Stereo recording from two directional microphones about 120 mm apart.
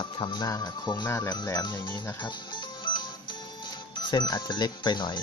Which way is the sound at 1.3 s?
35° left (ahead or behind).